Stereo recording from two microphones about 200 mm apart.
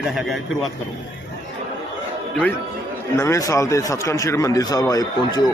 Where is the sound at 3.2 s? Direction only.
15° left (ahead or behind).